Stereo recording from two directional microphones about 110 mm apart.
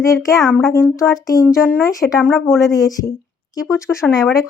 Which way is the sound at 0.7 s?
30° left (ahead or behind).